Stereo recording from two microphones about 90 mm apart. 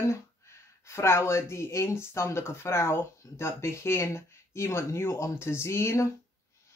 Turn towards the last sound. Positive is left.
turn(degrees=30)  # may be behind; listen again after turning